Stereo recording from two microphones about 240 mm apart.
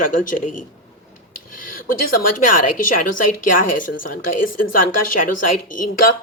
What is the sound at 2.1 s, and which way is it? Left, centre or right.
Speech, left.